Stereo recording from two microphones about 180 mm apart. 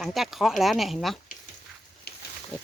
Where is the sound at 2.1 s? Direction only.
60° left (ahead or behind).